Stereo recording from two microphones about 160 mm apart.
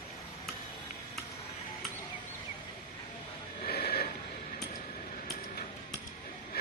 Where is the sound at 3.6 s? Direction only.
75° left (ahead or behind).